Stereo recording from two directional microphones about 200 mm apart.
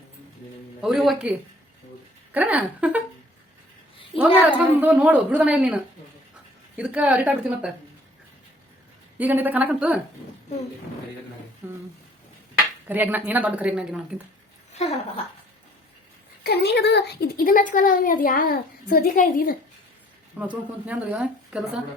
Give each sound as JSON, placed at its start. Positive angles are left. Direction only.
{"t": 0.8, "sound": "a man's voice", "side_deg": 0}
{"t": 2.3, "sound": "a woman's voice", "side_deg": -10}
{"t": 4.5, "sound": "a woman's voice", "side_deg": -10}
{"t": 9.1, "sound": "a woman's voice", "side_deg": -10}
{"t": 11.6, "sound": "a woman's voice", "side_deg": -10}
{"t": 12.9, "sound": "a woman's voice", "side_deg": -10}
{"t": 14.8, "sound": "speech", "side_deg": 30}
{"t": 16.4, "sound": "a woman's voice", "side_deg": 55}
{"t": 20.4, "sound": "a woman's voice", "side_deg": -5}